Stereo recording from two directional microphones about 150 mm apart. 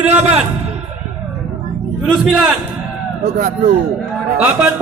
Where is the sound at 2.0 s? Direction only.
Centre (ahead or behind).